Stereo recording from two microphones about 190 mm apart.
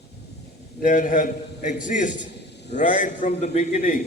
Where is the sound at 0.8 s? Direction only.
45° left (ahead or behind).